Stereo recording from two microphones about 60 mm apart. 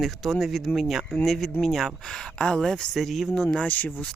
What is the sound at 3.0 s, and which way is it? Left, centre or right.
Speech, centre.